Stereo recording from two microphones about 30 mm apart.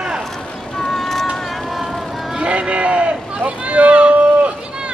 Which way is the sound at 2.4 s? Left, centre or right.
Right.